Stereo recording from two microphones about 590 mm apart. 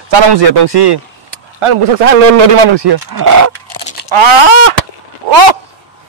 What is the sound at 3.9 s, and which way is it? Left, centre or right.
Speech, right.